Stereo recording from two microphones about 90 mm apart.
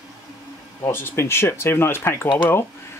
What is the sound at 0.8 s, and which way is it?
Speech, 25° left (ahead or behind).